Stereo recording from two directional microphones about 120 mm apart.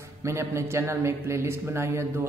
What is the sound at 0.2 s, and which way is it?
A man's voice, 25° right (ahead or behind).